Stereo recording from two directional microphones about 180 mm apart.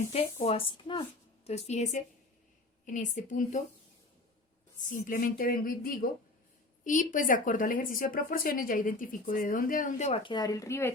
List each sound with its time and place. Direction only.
0.0 s speech: 40° left (ahead or behind)
4.9 s speech: 50° left (ahead or behind)
10.3 s speech: 20° left (ahead or behind)